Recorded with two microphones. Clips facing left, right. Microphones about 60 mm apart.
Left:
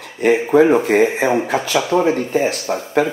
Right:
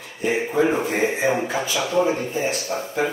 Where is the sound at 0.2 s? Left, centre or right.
Left.